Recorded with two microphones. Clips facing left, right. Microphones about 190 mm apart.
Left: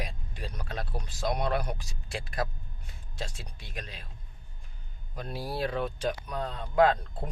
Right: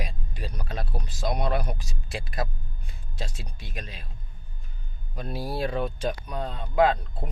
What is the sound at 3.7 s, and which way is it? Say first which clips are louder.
Speech: right 1 dB; 5° right (ahead or behind).